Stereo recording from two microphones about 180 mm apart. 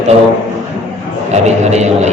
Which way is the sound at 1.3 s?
40° right (ahead or behind).